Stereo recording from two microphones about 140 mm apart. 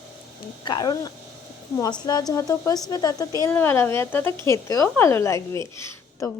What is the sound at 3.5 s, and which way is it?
A woman's voice, 15° left (ahead or behind).